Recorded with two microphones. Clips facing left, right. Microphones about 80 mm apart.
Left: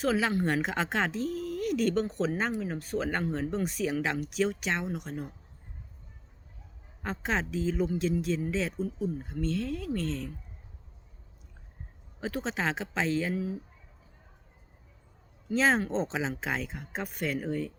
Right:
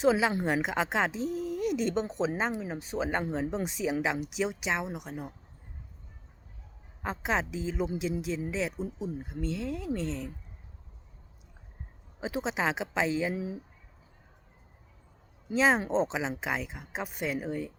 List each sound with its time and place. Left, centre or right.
0.0 s a woman's voice: centre
7.0 s a woman's voice: centre
8.8 s a woman's voice: centre
12.2 s a woman's voice: centre
15.4 s a woman's voice: centre